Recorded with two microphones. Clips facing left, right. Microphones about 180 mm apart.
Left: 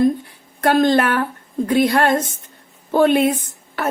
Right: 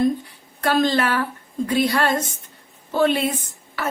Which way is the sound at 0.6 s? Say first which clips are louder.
Left 4 dB; 50° left (ahead or behind).